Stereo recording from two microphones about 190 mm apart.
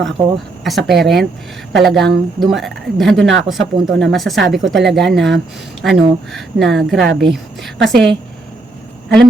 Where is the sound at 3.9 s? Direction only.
70° right (ahead or behind).